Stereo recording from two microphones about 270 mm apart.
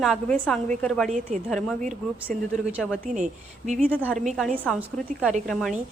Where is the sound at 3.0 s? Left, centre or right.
Right.